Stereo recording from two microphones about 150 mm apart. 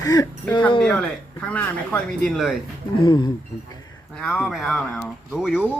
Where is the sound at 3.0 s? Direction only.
30° left (ahead or behind).